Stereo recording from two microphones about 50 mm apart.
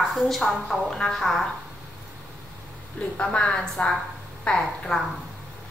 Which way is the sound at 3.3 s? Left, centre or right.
Centre.